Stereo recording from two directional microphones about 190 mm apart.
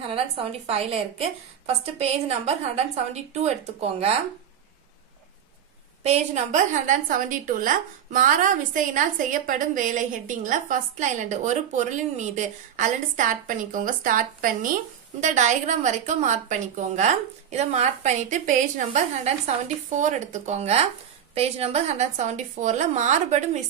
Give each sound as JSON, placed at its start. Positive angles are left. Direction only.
{"t": 0.0, "sound": "a woman's voice", "side_deg": -30}
{"t": 6.0, "sound": "a woman's voice", "side_deg": -35}